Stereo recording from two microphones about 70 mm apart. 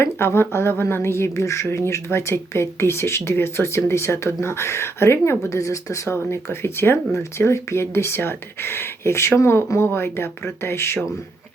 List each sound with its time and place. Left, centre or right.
0.0 s speech: left
6.1 s speech: left